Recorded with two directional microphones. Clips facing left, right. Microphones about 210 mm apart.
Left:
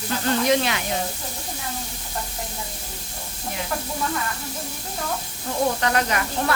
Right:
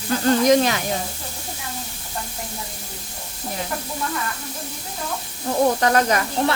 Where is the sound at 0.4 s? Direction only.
40° right (ahead or behind).